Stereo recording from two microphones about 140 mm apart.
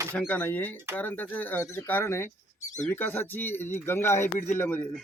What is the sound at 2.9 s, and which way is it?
Speech, 15° left (ahead or behind).